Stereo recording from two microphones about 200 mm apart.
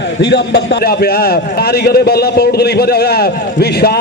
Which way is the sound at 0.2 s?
55° left (ahead or behind).